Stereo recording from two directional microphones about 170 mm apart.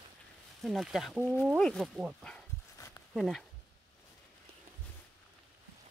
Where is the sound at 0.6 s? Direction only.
Centre (ahead or behind).